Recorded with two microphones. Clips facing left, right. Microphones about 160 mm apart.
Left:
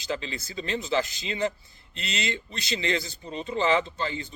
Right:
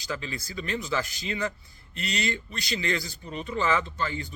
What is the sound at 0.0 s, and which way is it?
Speech, 25° left (ahead or behind).